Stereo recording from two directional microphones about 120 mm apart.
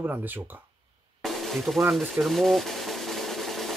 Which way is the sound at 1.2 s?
Centre (ahead or behind).